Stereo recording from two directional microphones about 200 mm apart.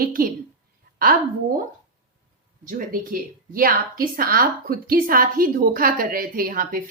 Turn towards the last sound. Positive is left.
turn(degrees=-45)  # may be behind; listen again after turning